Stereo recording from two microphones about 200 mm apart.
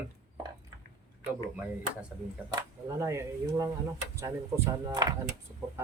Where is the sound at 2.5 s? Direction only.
15° right (ahead or behind).